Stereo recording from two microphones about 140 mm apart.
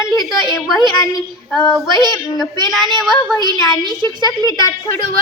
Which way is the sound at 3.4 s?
30° right (ahead or behind).